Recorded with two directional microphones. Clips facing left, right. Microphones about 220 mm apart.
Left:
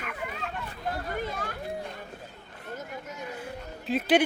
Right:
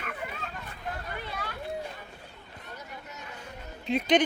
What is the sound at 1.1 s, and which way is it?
Speech, 45° left (ahead or behind).